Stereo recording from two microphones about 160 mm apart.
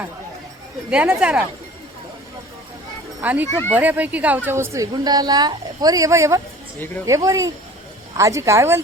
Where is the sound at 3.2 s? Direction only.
10° right (ahead or behind).